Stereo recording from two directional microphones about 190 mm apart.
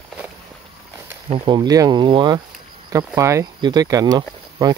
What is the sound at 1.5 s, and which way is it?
Speech, 20° right (ahead or behind).